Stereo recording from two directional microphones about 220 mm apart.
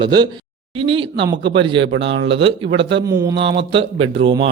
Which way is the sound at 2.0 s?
55° right (ahead or behind).